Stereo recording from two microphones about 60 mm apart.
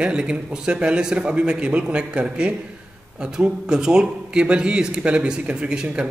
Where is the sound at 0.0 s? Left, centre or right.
Centre.